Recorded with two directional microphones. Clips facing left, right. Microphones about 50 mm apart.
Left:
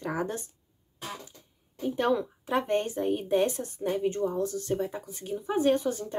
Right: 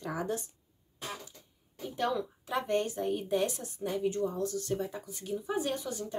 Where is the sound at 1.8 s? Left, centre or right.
Left.